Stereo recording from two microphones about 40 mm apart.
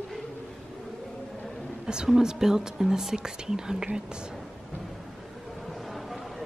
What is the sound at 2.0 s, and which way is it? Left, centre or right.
Speech, centre.